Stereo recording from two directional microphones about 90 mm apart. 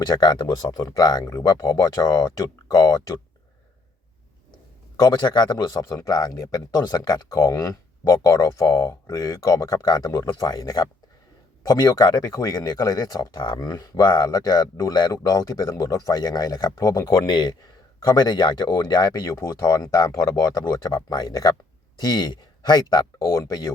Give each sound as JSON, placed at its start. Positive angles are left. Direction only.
{"t": 0.0, "sound": "a man's voice", "side_deg": 50}
{"t": 4.9, "sound": "a man's voice", "side_deg": 50}
{"t": 12.5, "sound": "speech", "side_deg": 50}
{"t": 13.6, "sound": "speech", "side_deg": 40}
{"t": 19.2, "sound": "a man's voice", "side_deg": 35}